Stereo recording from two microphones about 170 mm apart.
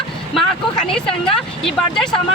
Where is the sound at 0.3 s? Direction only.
5° left (ahead or behind).